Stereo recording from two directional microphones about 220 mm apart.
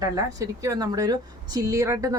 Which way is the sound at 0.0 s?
15° right (ahead or behind).